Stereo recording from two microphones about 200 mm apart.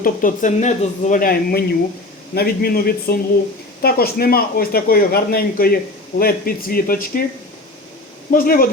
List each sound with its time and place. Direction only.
0.0 s speech: 40° left (ahead or behind)
8.3 s speech: 45° left (ahead or behind)